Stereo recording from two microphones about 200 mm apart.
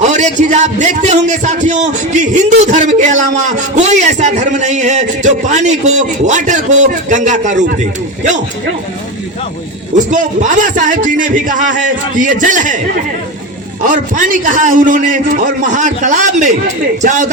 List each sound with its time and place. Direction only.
0.0 s a man's voice: 35° right (ahead or behind)
10.1 s a man's voice: 40° right (ahead or behind)
13.8 s a man's voice: 40° right (ahead or behind)